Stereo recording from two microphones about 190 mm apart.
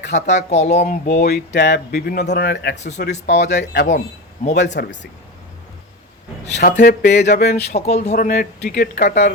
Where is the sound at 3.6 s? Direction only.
65° left (ahead or behind).